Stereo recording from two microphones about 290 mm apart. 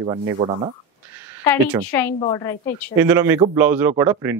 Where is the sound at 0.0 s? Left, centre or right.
Centre.